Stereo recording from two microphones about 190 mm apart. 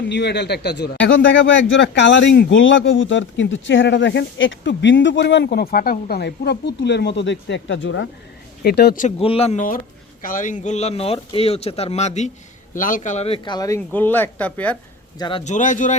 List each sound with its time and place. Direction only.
0.1 s a man's voice: 65° left (ahead or behind)
2.5 s speech: 85° left
8.6 s a man's voice: 55° left (ahead or behind)
9.0 s speech: 30° left (ahead or behind); by 14.8 s 10° left (ahead or behind)
15.2 s speech: 25° left (ahead or behind)
15.5 s speech: 40° left (ahead or behind)